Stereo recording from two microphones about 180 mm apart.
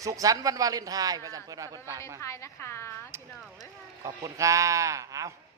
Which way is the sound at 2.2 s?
15° left (ahead or behind).